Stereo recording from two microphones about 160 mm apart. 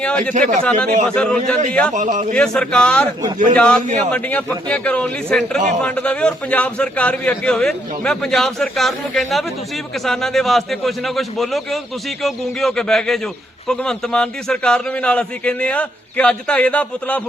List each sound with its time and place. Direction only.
0.0 s a man's voice: 5° left (ahead or behind)
0.3 s a man's voice: 55° right (ahead or behind)
0.6 s a man's voice: 5° left (ahead or behind)
1.9 s a man's voice: 50° right (ahead or behind)
2.3 s a man's voice: 5° left (ahead or behind)